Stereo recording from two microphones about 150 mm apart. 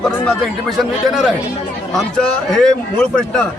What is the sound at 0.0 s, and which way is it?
A man's voice, 5° left (ahead or behind).